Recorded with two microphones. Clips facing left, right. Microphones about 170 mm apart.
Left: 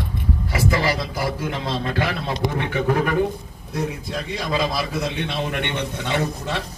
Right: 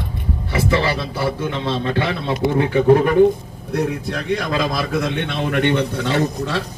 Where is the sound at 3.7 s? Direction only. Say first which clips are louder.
Right 5 dB; 65° right (ahead or behind); by 5.8 s 45° right (ahead or behind).